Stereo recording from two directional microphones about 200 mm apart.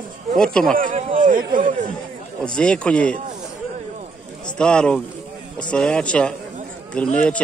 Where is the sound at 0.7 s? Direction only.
40° right (ahead or behind).